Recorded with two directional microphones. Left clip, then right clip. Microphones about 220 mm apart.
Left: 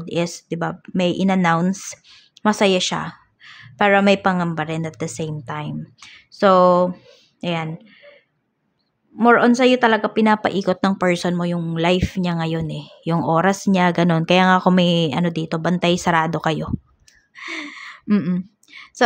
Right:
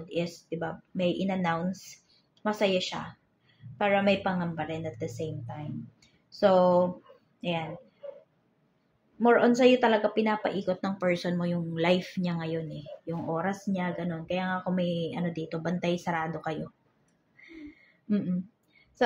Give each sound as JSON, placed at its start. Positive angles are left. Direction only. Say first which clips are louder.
{"t": 0.1, "sound": "a woman's voice", "louder": "left 9 dB", "side_deg": 45}
{"t": 9.2, "sound": "speech", "louder": "left 8 dB", "side_deg": 40}
{"t": 17.4, "sound": "a sound", "louder": "left 18 dB", "side_deg": 40}
{"t": 19.0, "sound": "a woman's voice", "louder": "left 10 dB", "side_deg": 45}